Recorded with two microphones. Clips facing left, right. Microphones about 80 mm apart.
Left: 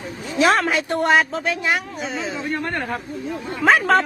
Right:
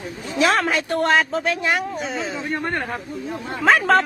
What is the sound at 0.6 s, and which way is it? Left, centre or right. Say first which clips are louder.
Speech: even; centre.